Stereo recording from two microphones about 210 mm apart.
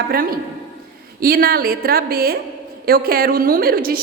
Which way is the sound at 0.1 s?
45° right (ahead or behind).